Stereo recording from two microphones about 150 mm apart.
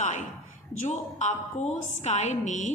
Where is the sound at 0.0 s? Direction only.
55° left (ahead or behind).